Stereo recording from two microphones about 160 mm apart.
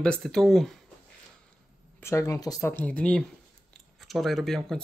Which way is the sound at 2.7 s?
10° left (ahead or behind).